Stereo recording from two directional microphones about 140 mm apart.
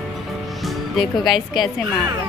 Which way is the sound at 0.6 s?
Centre (ahead or behind).